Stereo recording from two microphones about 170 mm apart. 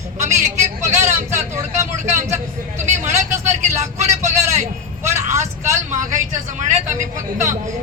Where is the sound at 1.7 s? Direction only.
45° right (ahead or behind).